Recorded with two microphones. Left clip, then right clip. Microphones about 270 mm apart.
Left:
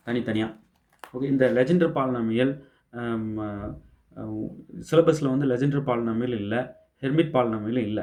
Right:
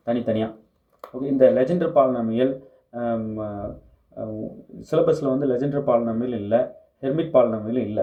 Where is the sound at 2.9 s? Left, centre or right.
Left.